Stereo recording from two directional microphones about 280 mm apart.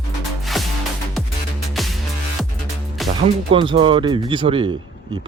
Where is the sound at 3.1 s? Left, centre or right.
Centre.